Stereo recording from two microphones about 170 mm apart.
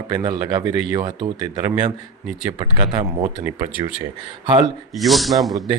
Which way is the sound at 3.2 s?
10° right (ahead or behind).